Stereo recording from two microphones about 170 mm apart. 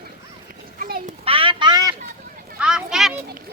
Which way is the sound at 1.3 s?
30° right (ahead or behind).